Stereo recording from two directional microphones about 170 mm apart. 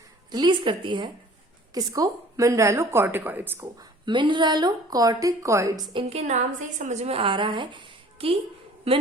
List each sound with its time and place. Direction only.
0.3 s a woman's voice: 25° right (ahead or behind)
4.0 s a woman's voice: 25° right (ahead or behind)